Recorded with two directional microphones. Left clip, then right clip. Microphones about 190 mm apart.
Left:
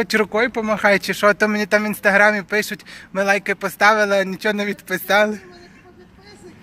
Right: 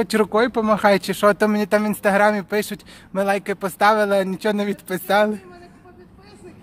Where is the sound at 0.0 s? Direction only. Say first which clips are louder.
Left 1 dB; 15° right (ahead or behind).